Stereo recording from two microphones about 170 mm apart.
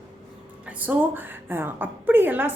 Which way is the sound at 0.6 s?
10° right (ahead or behind).